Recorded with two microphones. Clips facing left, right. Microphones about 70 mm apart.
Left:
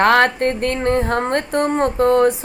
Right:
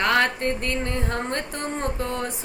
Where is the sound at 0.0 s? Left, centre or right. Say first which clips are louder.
Left 8 dB; left.